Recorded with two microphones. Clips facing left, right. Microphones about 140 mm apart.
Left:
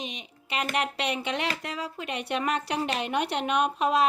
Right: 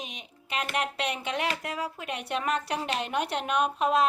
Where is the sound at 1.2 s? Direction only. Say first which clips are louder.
Even; 5° right (ahead or behind).